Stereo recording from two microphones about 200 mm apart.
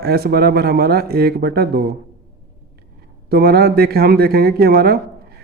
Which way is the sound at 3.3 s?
50° right (ahead or behind).